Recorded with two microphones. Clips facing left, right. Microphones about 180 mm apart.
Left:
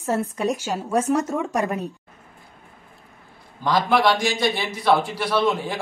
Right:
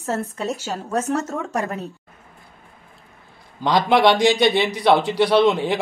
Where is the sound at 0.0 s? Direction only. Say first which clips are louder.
Left 2 dB; 10° left (ahead or behind).